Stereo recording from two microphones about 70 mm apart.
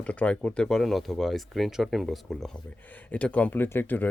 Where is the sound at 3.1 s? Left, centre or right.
Centre.